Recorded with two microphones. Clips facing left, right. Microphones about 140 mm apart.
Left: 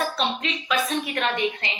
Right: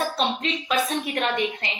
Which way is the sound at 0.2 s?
40° right (ahead or behind).